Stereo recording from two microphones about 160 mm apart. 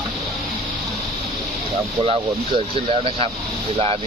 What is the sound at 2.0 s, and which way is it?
Speech, 35° right (ahead or behind).